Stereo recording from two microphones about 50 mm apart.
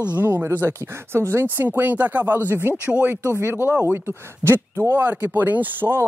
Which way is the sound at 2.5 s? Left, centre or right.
Right.